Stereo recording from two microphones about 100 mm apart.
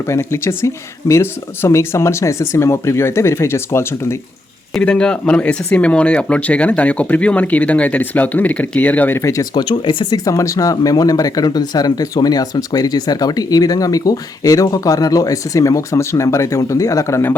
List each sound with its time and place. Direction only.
0.1 s speech: 25° left (ahead or behind)
4.7 s speech: 10° left (ahead or behind); by 9.4 s 25° left (ahead or behind)
9.4 s speech: 45° left (ahead or behind)
10.2 s speech: 35° left (ahead or behind)